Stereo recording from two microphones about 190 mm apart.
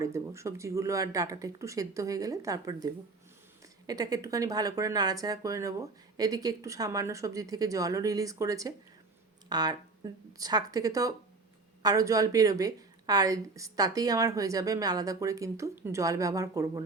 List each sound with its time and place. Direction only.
0.0 s a woman's voice: 15° right (ahead or behind)